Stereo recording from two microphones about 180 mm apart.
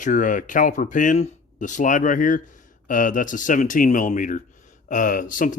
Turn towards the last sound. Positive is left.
turn(degrees=50)  # may be behind; listen again after turning